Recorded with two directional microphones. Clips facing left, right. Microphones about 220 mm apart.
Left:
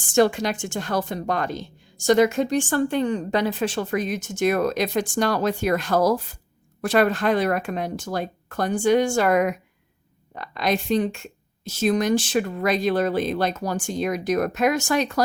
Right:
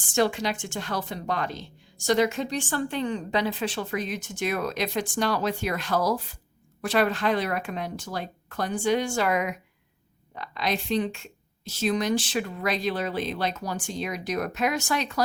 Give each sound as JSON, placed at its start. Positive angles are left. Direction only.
{"t": 0.1, "sound": "speech", "side_deg": 50}